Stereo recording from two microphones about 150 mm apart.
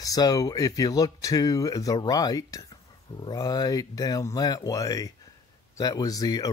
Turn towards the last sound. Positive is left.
turn(degrees=25)  # may be behind; listen again after turning